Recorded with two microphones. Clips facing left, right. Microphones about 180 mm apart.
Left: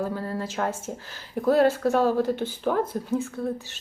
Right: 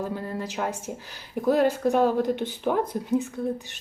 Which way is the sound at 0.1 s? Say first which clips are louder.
Left 1 dB; 15° right (ahead or behind).